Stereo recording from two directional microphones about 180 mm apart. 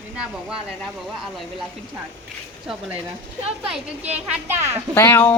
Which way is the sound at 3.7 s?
10° right (ahead or behind).